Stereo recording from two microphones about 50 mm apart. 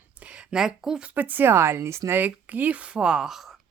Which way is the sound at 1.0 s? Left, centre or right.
Right.